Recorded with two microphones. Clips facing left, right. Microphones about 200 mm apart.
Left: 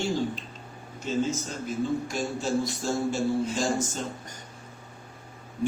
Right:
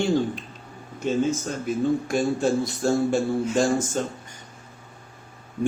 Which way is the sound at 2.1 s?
55° right (ahead or behind).